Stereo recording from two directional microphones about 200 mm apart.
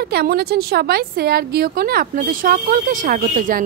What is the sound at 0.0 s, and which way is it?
A woman's voice, 50° right (ahead or behind).